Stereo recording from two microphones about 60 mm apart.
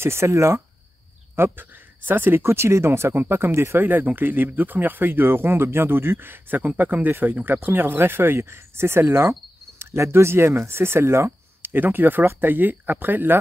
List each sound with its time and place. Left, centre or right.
0.0 s speech: right
1.3 s speech: right